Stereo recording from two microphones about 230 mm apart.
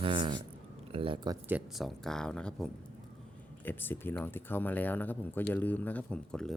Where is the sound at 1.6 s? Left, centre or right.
Centre.